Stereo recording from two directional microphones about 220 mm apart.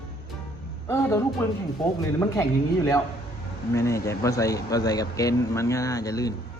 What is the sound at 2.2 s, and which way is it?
Speech, 15° left (ahead or behind).